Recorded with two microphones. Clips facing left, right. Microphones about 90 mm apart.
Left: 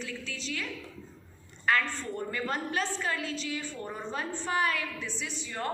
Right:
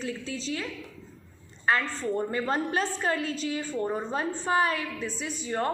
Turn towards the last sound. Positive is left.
turn(degrees=-35)  # may be behind; listen again after turning